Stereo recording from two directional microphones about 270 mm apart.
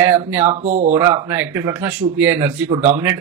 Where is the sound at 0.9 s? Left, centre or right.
Centre.